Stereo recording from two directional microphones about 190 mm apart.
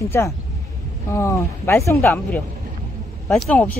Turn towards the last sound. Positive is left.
turn(degrees=10)  # may be behind; listen again after turning